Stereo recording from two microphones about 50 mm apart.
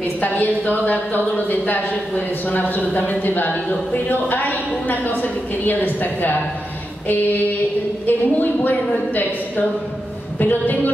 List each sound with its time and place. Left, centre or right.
0.2 s speech: left
8.1 s speech: left